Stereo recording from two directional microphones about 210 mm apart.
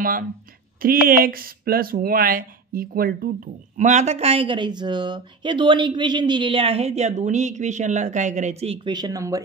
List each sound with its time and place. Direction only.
1.0 s speech: 45° right (ahead or behind); by 9.4 s 15° right (ahead or behind)